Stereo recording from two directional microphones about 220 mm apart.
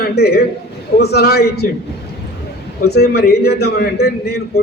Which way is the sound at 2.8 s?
45° left (ahead or behind).